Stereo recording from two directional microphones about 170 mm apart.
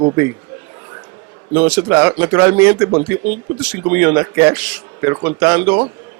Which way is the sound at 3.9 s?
15° right (ahead or behind).